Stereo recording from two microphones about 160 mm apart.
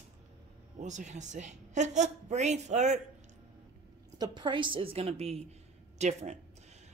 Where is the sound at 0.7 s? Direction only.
50° right (ahead or behind).